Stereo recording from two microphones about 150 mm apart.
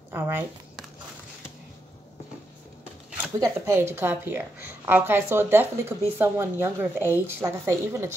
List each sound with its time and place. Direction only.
0.1 s speech: 15° right (ahead or behind)
3.3 s speech: 25° right (ahead or behind)